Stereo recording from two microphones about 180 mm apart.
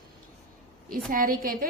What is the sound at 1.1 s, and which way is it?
Speech, 50° right (ahead or behind).